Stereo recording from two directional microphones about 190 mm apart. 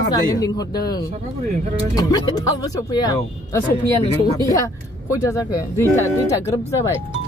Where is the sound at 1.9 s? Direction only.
20° left (ahead or behind).